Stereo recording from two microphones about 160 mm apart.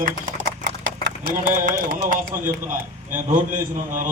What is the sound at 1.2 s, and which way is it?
Speech, 60° right (ahead or behind).